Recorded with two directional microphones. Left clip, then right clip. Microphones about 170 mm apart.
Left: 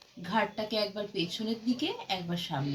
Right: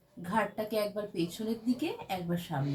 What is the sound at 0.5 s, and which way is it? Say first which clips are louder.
Speech: even; 5° right (ahead or behind).